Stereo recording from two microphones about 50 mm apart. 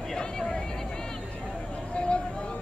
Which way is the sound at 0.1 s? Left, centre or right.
Centre.